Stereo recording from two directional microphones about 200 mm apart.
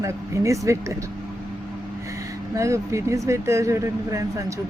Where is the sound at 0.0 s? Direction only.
15° right (ahead or behind).